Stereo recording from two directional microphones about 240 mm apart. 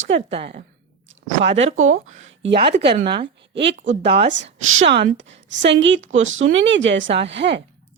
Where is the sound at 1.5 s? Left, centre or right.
Right.